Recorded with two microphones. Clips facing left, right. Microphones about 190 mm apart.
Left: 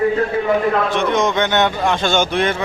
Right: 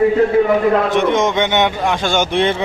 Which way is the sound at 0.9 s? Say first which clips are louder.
Right 2 dB; 20° right (ahead or behind).